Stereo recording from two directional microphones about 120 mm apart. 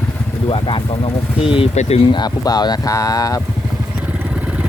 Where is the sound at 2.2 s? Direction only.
35° left (ahead or behind).